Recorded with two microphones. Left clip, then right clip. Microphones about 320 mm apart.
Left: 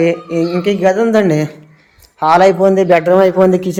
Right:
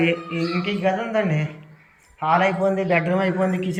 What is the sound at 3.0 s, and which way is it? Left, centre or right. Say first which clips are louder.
Speech: left 13 dB; centre.